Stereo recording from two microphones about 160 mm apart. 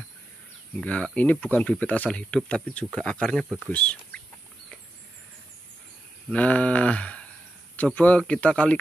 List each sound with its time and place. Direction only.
0.7 s speech: 5° left (ahead or behind)
6.3 s speech: 10° left (ahead or behind)